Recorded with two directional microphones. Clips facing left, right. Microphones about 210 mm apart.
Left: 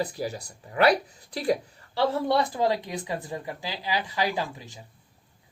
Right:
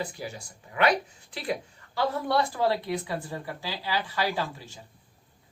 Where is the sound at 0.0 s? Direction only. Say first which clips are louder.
Left 5 dB; 35° left (ahead or behind).